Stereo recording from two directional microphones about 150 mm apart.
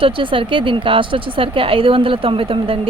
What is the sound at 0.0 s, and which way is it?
Speech, 35° right (ahead or behind).